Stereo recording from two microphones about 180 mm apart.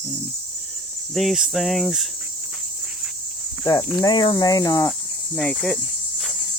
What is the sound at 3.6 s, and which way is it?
Speech, 20° left (ahead or behind).